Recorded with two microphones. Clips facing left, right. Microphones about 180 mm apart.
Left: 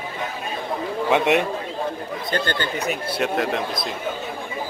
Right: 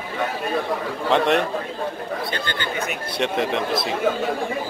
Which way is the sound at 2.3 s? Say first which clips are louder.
Left 3 dB; 45° left (ahead or behind).